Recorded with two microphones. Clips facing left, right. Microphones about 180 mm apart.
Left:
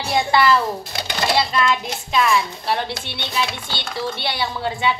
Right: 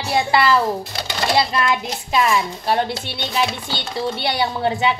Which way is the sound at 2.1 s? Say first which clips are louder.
Even; 40° right (ahead or behind).